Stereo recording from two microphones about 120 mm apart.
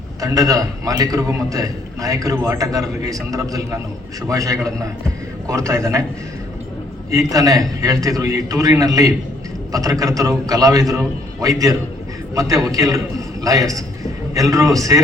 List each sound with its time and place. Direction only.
0.2 s a man's voice: 30° right (ahead or behind)
7.1 s a man's voice: 30° right (ahead or behind)
12.3 s a man's voice: 30° right (ahead or behind)